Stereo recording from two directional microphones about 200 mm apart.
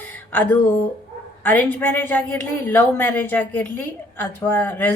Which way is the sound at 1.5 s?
10° left (ahead or behind).